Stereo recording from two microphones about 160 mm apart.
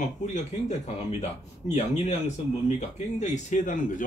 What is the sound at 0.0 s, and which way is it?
Speech, 50° left (ahead or behind).